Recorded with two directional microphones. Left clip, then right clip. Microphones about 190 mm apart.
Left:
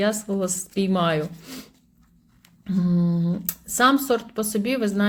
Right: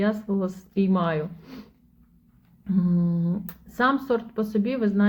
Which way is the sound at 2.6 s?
15° left (ahead or behind).